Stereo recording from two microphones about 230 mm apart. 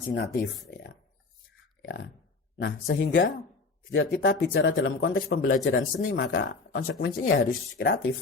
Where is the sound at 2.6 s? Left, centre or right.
Left.